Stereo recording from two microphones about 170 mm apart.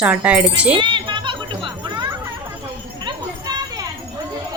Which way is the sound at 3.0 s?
25° right (ahead or behind).